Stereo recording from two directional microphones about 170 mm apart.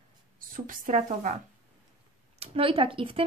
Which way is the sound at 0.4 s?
50° right (ahead or behind).